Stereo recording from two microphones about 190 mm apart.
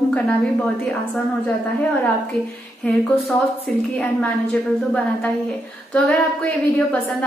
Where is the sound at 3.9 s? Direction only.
5° left (ahead or behind).